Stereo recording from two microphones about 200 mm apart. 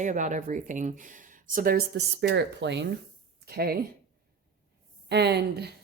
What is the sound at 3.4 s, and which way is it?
Speech, 50° right (ahead or behind).